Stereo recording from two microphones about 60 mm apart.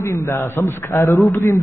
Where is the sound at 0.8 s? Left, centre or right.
Left.